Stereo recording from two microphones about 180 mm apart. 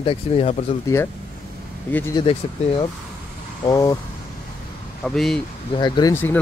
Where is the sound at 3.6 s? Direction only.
20° left (ahead or behind).